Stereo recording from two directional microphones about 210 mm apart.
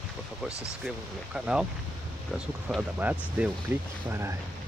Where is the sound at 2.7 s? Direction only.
5° right (ahead or behind).